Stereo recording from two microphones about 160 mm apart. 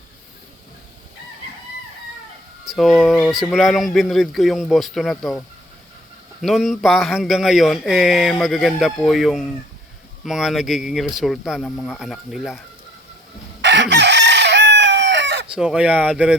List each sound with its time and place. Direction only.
2.7 s speech: centre (ahead or behind)
6.4 s speech: centre (ahead or behind)
13.6 s chicken: 90° right
15.5 s speech: 5° right (ahead or behind)